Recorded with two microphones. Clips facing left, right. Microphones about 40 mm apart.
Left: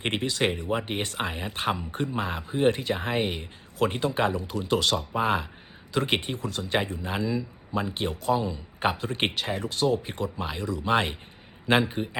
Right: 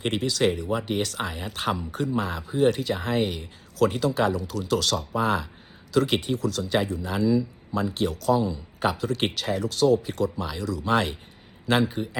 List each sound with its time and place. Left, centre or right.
0.0 s speech: left